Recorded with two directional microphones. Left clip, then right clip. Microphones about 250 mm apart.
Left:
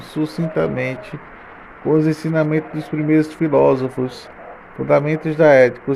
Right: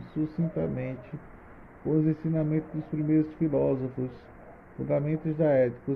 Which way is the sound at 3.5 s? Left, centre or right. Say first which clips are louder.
Left 15 dB; left.